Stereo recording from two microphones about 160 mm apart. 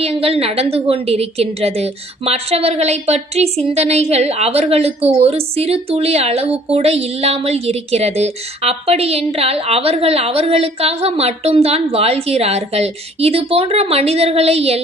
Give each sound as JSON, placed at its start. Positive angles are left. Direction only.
{"t": 0.0, "sound": "a woman's voice", "side_deg": -35}